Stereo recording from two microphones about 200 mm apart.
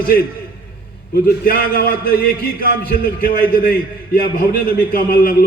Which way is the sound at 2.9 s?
45° left (ahead or behind).